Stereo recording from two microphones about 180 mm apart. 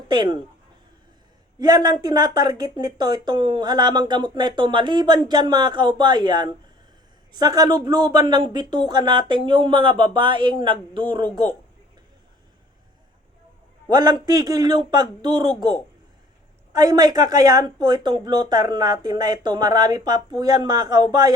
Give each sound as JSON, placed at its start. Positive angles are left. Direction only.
{"t": 0.1, "sound": "speech", "side_deg": -25}
{"t": 1.5, "sound": "speech", "side_deg": -20}
{"t": 13.9, "sound": "speech", "side_deg": -25}